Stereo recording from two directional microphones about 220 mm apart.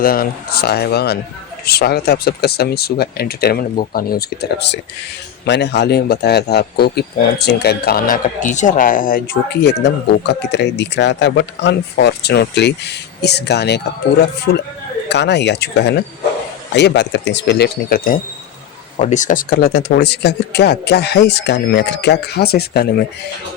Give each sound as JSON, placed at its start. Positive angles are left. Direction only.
{"t": 0.0, "sound": "speech", "side_deg": 40}